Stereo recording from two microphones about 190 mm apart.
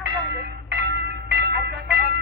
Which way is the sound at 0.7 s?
65° right (ahead or behind).